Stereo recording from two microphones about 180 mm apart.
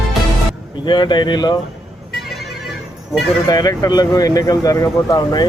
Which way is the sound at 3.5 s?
20° left (ahead or behind).